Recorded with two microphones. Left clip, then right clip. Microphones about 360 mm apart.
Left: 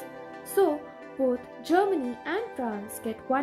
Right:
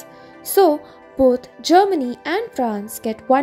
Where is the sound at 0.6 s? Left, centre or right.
Centre.